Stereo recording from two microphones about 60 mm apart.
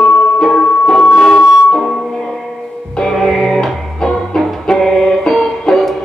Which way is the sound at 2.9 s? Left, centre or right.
Centre.